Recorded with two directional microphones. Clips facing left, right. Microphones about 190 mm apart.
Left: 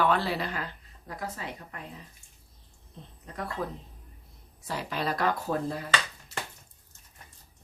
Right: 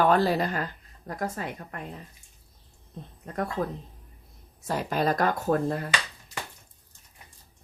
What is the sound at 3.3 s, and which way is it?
Speech, 50° right (ahead or behind).